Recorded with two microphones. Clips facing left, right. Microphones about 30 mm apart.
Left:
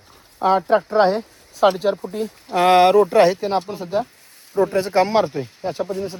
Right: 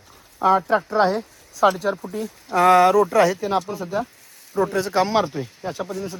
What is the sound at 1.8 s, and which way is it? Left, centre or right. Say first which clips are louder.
Speech: left 3 dB; left.